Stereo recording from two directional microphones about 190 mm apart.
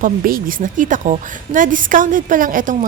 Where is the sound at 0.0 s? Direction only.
50° right (ahead or behind).